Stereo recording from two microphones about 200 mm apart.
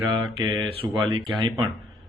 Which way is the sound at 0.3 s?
20° right (ahead or behind).